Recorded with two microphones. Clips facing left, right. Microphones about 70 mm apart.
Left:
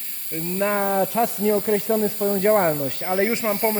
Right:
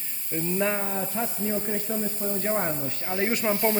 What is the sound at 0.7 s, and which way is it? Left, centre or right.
Speech, left.